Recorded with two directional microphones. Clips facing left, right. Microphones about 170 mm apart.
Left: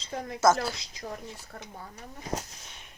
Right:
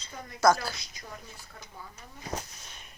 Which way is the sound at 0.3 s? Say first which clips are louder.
Even; 25° left (ahead or behind).